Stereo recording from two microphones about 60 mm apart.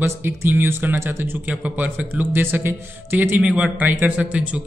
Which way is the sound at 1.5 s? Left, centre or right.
Right.